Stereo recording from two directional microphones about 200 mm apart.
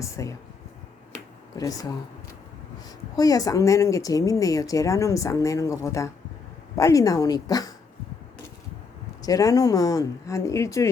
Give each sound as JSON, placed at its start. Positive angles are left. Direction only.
{"t": 0.0, "sound": "speech", "side_deg": 15}
{"t": 1.5, "sound": "speech", "side_deg": 20}
{"t": 3.2, "sound": "speech", "side_deg": 20}
{"t": 9.2, "sound": "speech", "side_deg": 20}